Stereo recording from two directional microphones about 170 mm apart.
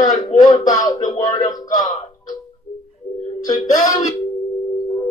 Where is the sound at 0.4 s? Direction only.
20° left (ahead or behind).